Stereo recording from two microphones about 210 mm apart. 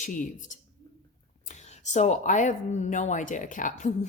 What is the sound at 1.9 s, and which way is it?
Speech, 35° left (ahead or behind).